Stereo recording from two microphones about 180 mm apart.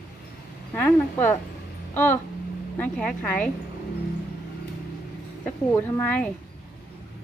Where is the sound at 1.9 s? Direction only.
10° left (ahead or behind).